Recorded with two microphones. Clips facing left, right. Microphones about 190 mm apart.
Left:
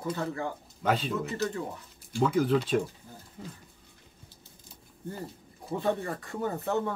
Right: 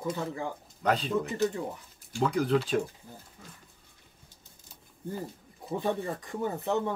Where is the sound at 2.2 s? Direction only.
Centre (ahead or behind).